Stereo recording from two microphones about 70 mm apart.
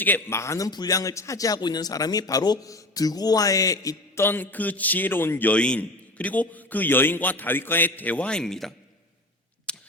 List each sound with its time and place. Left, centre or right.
0.3 s speech: left
0.7 s a man's voice: left
0.9 s a man's voice: left
2.6 s a man's voice: left
4.1 s a man's voice: left
5.5 s a man's voice: centre
9.7 s a sound: centre